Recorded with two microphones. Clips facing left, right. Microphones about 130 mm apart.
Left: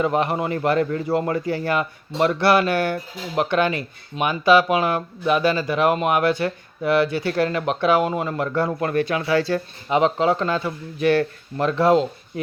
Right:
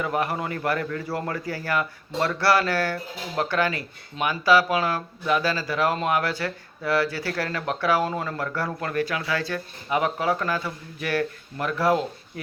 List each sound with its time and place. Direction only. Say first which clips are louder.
0.0 s a man's voice: left 5 dB; 25° left (ahead or behind)